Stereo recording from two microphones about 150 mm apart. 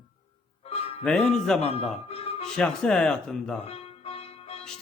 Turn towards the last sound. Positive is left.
turn(degrees=40)  # may be behind; listen again after turning